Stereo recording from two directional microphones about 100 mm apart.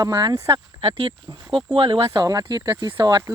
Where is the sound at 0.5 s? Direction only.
60° right (ahead or behind).